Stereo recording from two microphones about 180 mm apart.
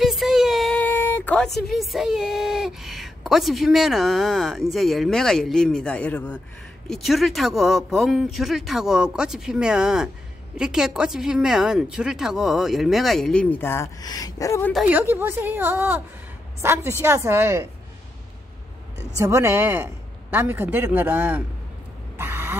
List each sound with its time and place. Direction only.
0.0 s a woman's voice: centre (ahead or behind); by 14.7 s 20° left (ahead or behind)
14.7 s a man's voice: 5° right (ahead or behind)
19.1 s a man's voice: 15° right (ahead or behind)
22.1 s a sound: 10° right (ahead or behind)